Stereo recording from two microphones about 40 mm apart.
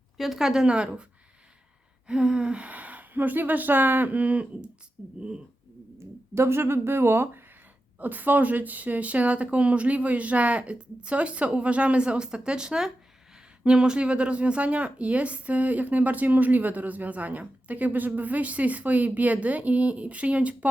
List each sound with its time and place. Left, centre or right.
0.2 s speech: centre
0.7 s speech: right
2.0 s speech: right
5.0 s speech: centre
6.3 s speech: right
7.9 s speech: right